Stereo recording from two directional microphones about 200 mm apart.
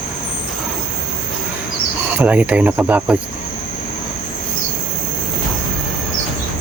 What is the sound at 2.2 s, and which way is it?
Cricket, 5° right (ahead or behind).